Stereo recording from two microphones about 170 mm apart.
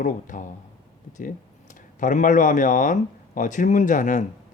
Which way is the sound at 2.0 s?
45° left (ahead or behind).